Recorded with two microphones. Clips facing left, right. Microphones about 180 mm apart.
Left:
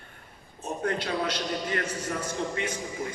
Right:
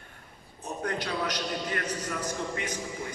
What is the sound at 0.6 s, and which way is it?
A man's voice, 25° left (ahead or behind).